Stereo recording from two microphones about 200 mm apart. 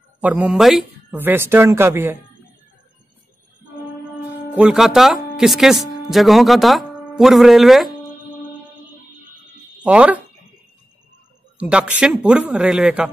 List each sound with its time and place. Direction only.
0.2 s speech: 10° right (ahead or behind)
4.6 s speech: 5° right (ahead or behind)
9.8 s speech: 5° right (ahead or behind)
11.5 s speech: 5° right (ahead or behind)